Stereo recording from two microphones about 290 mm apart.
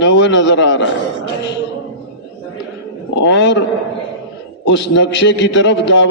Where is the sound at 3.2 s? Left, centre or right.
Left.